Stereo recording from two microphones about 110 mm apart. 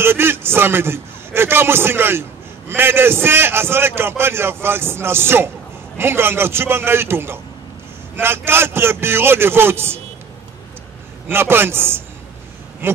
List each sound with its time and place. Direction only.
0.0 s a man's voice: 20° right (ahead or behind)
11.2 s a man's voice: 20° right (ahead or behind)